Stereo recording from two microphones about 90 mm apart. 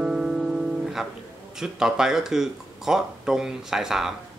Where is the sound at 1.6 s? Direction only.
5° right (ahead or behind).